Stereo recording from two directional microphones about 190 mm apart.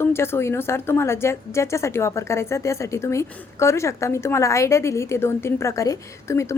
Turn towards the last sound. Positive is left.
turn(degrees=15)  # may be behind; listen again after turning